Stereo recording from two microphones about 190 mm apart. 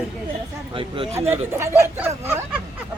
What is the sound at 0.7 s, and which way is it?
Speech, 30° right (ahead or behind).